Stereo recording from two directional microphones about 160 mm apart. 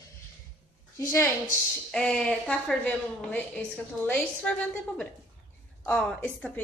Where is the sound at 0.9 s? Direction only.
20° left (ahead or behind).